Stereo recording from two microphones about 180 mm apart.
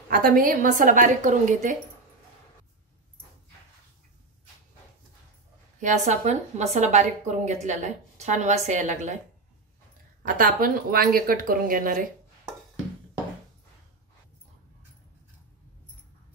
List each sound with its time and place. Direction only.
0.1 s speech: 50° right (ahead or behind)
5.8 s speech: 40° right (ahead or behind)
10.2 s speech: 50° right (ahead or behind)